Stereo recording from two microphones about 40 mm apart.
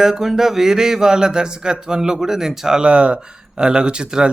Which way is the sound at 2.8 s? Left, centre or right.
Right.